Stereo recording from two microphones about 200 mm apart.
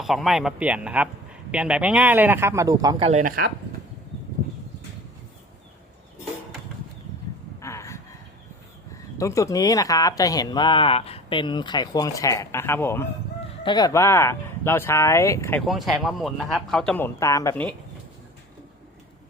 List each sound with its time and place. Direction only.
0.0 s a man's voice: centre (ahead or behind); by 3.1 s 20° right (ahead or behind)
3.1 s speech: 40° right (ahead or behind)
7.6 s a sound: 15° left (ahead or behind)
9.1 s speech: 15° left (ahead or behind)
15.6 s a man's voice: centre (ahead or behind)